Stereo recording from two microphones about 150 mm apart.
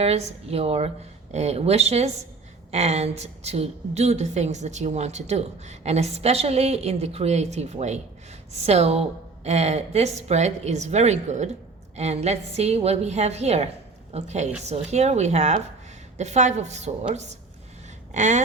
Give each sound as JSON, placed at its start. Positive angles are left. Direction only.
{"t": 0.0, "sound": "a woman's voice", "side_deg": -45}
{"t": 18.1, "sound": "a woman's voice", "side_deg": -55}